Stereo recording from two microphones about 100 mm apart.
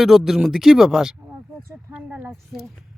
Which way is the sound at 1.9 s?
15° right (ahead or behind).